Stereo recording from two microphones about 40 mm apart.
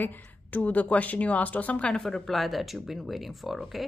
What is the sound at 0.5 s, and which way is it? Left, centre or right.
A woman's voice, left.